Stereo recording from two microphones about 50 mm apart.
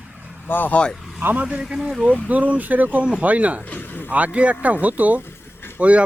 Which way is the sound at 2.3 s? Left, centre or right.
Right.